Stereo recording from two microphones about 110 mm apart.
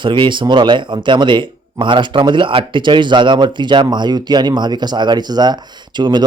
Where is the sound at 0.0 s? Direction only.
45° right (ahead or behind).